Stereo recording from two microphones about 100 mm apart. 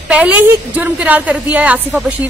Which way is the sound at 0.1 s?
15° right (ahead or behind).